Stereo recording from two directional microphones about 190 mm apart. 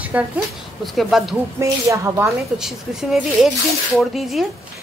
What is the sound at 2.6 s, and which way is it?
A woman's voice, centre (ahead or behind).